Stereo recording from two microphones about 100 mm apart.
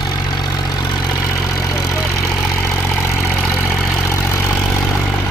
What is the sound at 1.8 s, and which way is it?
Vehicle, 30° left (ahead or behind).